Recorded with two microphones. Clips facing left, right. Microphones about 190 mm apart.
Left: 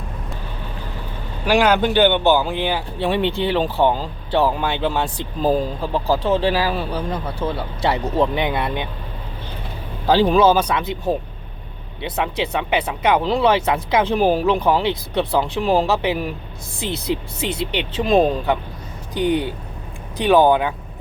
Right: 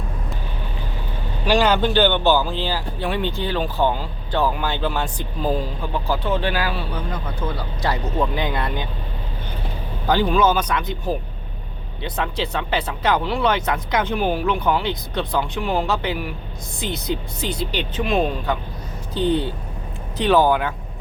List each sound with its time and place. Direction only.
1.5 s speech: 10° left (ahead or behind)
5.4 s speech: 40° left (ahead or behind); by 8.9 s 20° left (ahead or behind)
10.1 s speech: 30° left (ahead or behind)
13.2 s speech: 30° left (ahead or behind)
18.0 s speech: 35° left (ahead or behind)
19.1 s speech: 15° left (ahead or behind)